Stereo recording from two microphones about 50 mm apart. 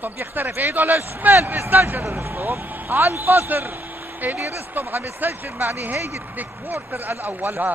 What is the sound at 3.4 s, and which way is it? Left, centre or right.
Speech, right.